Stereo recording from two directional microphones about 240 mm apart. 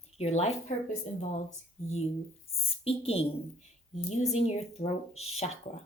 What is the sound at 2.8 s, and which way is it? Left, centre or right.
A woman's voice, left.